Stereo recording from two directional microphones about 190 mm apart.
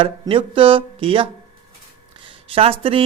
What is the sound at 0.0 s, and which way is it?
Mantra, 30° right (ahead or behind).